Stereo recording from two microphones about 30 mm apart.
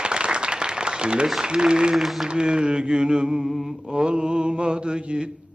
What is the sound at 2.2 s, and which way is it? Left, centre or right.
Mantra, right.